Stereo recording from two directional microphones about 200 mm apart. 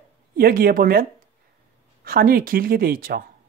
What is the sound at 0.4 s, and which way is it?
Speech, 45° right (ahead or behind).